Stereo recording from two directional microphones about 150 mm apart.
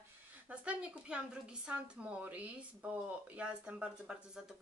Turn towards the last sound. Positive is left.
turn(degrees=-5)  # may be behind; listen again after turning